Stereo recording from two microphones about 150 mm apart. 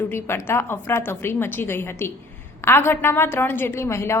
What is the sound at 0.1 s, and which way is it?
A woman's voice, 15° left (ahead or behind).